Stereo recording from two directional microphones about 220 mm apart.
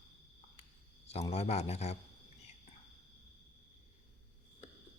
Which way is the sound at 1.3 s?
30° left (ahead or behind).